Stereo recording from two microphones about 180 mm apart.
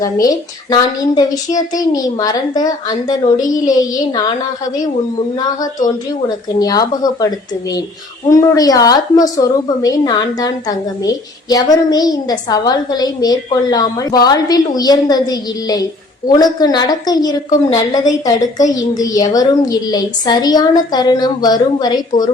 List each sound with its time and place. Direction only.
0.0 s a woman's voice: 20° left (ahead or behind)
6.1 s a woman's voice: 20° left (ahead or behind)